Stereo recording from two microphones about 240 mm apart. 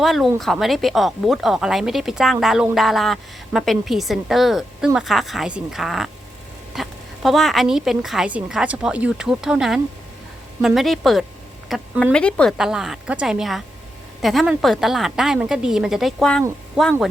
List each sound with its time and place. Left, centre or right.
0.0 s a woman's voice: centre